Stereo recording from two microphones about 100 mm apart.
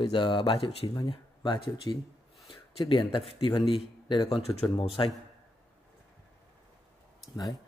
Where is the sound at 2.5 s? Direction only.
65° left (ahead or behind).